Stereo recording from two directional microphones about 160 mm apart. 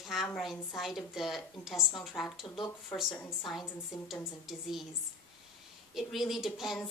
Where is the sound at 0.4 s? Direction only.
Centre (ahead or behind).